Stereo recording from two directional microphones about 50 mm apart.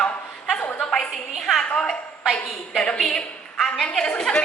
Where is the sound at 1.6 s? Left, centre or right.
Centre.